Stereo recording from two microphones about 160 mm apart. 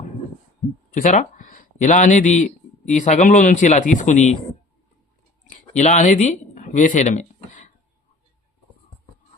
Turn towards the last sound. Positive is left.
turn(degrees=50)  # may be behind; listen again after turning